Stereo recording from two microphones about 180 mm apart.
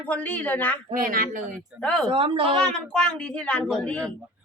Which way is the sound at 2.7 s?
5° left (ahead or behind).